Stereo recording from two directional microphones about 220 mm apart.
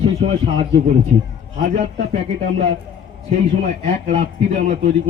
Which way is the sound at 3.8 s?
30° right (ahead or behind).